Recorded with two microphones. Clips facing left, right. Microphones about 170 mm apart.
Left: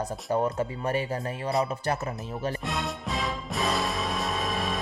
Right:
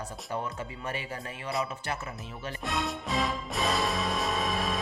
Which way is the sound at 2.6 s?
Centre (ahead or behind).